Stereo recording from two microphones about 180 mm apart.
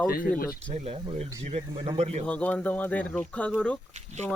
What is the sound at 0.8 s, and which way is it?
Speech, 35° right (ahead or behind).